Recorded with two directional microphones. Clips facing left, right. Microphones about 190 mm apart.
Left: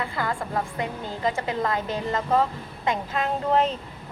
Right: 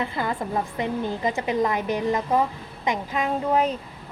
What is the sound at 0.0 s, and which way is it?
A woman's voice, 20° right (ahead or behind).